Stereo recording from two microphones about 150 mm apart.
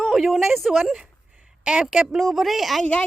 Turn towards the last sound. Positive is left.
turn(degrees=5)  # may be behind; listen again after turning